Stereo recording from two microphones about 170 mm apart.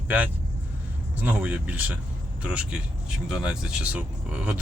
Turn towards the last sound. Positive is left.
turn(degrees=-10)  # may be behind; listen again after turning